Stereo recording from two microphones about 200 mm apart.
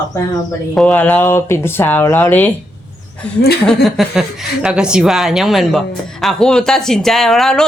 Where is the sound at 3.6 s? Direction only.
Centre (ahead or behind).